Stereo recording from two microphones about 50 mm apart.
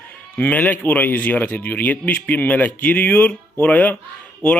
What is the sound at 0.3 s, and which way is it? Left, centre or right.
A man's voice, left.